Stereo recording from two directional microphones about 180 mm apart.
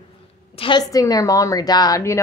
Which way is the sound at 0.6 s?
25° left (ahead or behind).